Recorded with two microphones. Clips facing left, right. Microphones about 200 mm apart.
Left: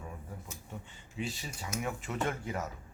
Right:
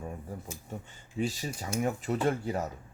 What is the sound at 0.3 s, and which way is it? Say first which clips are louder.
A man's voice: right 6 dB; 40° right (ahead or behind).